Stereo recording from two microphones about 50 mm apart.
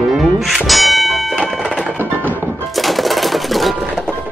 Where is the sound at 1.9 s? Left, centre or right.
Right.